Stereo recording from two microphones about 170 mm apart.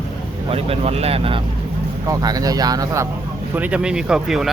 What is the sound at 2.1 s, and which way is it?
Speech, 20° right (ahead or behind).